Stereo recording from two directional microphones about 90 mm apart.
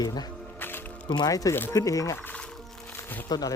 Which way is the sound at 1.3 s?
40° left (ahead or behind).